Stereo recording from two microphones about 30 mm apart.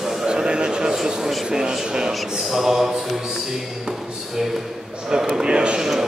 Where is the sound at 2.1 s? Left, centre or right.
Centre.